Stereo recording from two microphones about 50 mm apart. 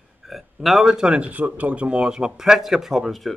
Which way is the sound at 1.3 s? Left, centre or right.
Right.